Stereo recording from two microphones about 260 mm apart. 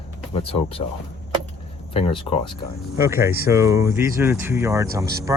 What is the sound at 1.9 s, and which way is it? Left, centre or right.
Speech, left.